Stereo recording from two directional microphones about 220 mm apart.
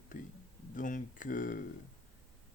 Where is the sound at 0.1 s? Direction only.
35° left (ahead or behind).